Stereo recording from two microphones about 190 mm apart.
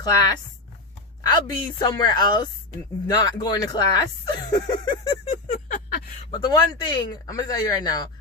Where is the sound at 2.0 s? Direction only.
20° left (ahead or behind).